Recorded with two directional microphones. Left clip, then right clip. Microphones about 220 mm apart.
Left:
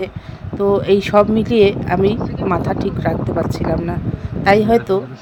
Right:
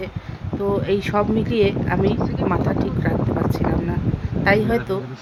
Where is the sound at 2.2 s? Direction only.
Centre (ahead or behind).